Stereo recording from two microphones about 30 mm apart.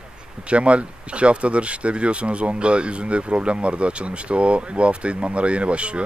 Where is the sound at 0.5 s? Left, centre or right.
Right.